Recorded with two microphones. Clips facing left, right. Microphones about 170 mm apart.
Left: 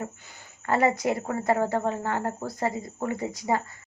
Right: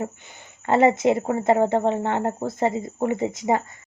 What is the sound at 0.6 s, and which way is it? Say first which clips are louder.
Speech: right 6 dB; 25° right (ahead or behind).